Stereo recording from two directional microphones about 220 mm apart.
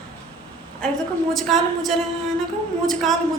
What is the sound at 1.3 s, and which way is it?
Speech, centre (ahead or behind).